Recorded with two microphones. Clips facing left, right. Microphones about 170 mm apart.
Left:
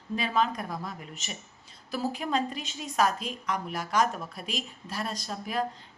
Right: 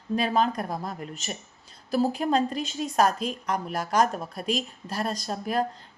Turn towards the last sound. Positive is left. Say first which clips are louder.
# right 4 dB
turn(degrees=-40)  # may be behind; listen again after turning